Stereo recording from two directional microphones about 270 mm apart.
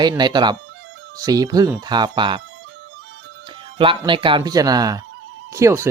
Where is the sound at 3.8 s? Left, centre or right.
Centre.